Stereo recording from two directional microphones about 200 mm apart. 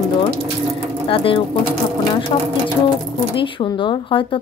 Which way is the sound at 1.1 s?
25° left (ahead or behind).